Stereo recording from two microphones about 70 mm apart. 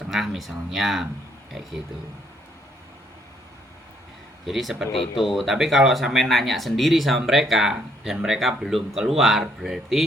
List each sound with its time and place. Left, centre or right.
0.1 s speech: centre
4.4 s speech: centre